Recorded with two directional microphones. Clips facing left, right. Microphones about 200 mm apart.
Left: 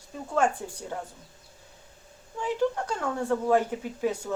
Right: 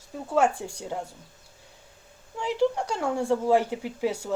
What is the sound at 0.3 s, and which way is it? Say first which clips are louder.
Speech: right 2 dB; 10° right (ahead or behind).